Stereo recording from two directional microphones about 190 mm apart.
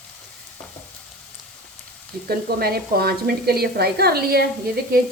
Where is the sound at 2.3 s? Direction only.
55° right (ahead or behind).